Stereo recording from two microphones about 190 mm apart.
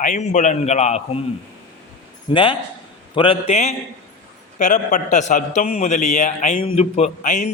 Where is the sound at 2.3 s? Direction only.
25° left (ahead or behind).